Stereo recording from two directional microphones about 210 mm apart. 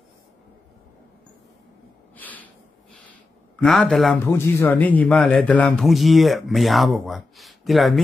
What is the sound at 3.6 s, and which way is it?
Speech, centre (ahead or behind).